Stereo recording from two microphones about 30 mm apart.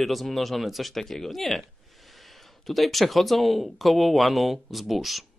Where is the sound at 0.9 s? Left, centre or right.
Centre.